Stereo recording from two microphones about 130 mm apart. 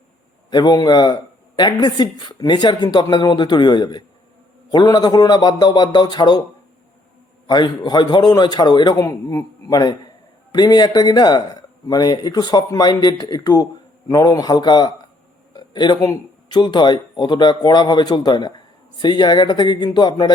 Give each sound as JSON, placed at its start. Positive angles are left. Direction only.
{"t": 0.5, "sound": "a woman's voice", "side_deg": 35}
{"t": 7.4, "sound": "a woman's voice", "side_deg": 35}